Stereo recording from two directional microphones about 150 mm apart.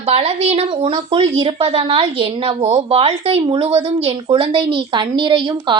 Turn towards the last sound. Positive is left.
turn(degrees=-30)  # may be behind; listen again after turning